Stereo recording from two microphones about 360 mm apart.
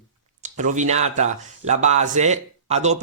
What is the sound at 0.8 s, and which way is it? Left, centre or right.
A man's voice, centre.